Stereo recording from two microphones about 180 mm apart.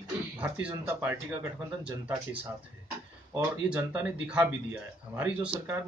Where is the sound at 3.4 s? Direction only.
10° right (ahead or behind).